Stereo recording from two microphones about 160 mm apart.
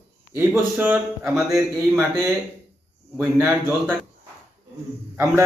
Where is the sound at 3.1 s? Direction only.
15° right (ahead or behind).